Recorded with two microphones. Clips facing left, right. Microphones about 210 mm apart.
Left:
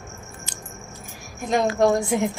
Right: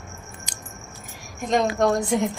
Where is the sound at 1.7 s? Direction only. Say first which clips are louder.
Left 1 dB; 10° left (ahead or behind).